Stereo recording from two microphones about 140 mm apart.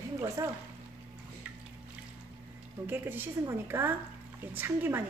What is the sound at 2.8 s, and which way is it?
A woman's voice, 15° right (ahead or behind).